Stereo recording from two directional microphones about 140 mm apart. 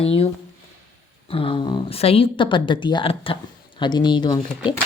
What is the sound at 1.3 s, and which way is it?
Speech, 40° left (ahead or behind).